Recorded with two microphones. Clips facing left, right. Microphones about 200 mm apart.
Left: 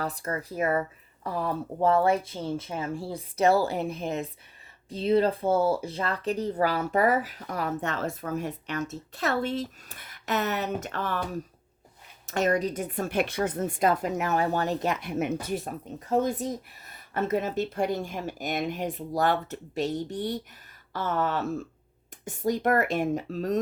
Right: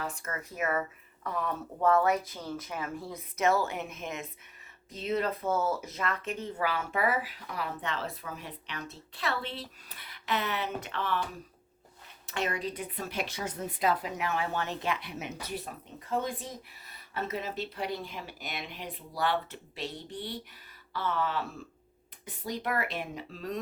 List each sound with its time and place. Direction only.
0.0 s speech: 35° left (ahead or behind)
12.2 s speech: 45° left (ahead or behind)